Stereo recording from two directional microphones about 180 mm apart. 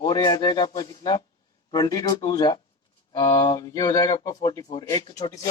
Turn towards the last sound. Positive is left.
turn(degrees=25)  # may be behind; listen again after turning